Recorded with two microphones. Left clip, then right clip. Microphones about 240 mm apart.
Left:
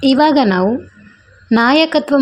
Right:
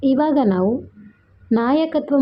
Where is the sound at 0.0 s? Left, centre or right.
Left.